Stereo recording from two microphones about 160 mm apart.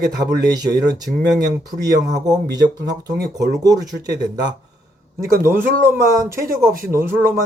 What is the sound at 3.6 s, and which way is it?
A man's voice, 25° right (ahead or behind).